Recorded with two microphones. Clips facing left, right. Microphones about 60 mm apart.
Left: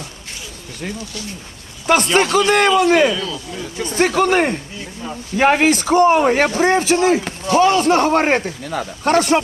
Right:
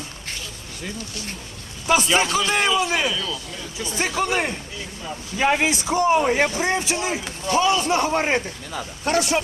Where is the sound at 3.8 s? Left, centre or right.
Left.